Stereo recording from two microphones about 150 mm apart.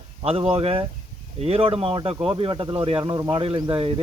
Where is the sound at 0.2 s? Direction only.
40° right (ahead or behind).